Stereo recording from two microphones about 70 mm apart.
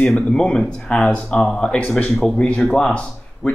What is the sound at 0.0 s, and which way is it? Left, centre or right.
Speech, centre.